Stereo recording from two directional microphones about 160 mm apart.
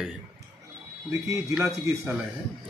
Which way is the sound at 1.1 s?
20° right (ahead or behind).